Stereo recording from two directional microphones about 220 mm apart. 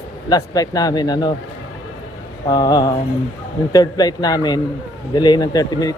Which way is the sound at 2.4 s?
20° left (ahead or behind).